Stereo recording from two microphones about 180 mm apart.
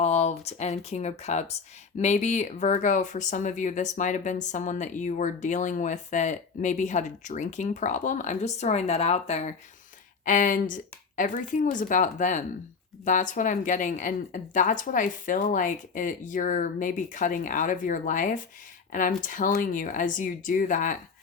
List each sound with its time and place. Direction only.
0.0 s speech: 40° left (ahead or behind)